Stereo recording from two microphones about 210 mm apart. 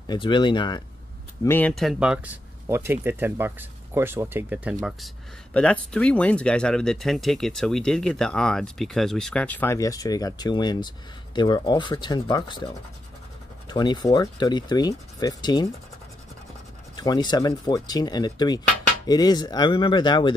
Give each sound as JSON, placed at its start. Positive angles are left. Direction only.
{"t": 0.0, "sound": "speech", "side_deg": 20}
{"t": 1.4, "sound": "speech", "side_deg": 10}
{"t": 16.9, "sound": "speech", "side_deg": 20}